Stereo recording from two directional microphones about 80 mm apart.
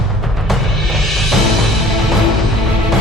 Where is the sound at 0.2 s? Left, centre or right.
Centre.